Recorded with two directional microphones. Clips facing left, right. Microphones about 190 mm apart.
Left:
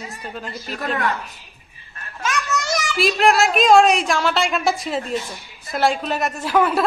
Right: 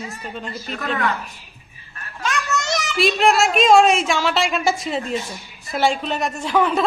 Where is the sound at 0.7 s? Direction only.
40° left (ahead or behind).